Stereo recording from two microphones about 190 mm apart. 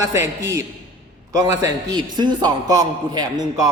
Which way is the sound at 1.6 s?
20° right (ahead or behind).